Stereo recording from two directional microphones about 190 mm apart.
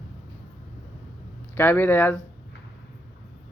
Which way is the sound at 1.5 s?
10° left (ahead or behind).